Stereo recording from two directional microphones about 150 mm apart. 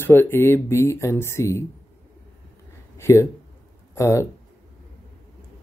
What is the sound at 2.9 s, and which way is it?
Speech, 20° left (ahead or behind).